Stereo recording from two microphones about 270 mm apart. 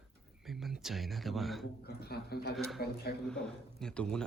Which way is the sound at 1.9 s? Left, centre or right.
Left.